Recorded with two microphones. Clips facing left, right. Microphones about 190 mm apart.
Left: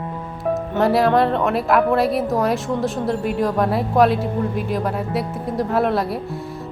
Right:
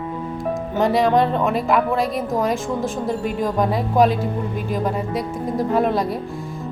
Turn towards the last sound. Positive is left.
turn(degrees=0)  # may be behind; listen again after turning